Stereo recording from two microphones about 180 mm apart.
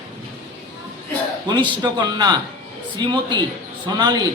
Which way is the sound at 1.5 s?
25° right (ahead or behind).